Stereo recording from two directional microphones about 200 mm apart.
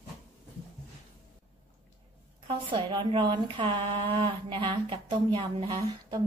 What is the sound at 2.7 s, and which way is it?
Speech, 25° right (ahead or behind).